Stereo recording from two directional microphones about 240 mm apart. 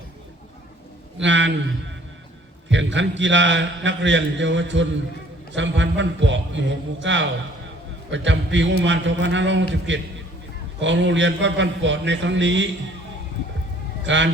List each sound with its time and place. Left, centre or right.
1.2 s a man's voice: right
2.6 s a man's voice: right
14.0 s speech: right